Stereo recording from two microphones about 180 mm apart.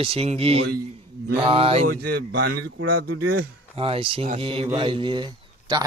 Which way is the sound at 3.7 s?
30° right (ahead or behind).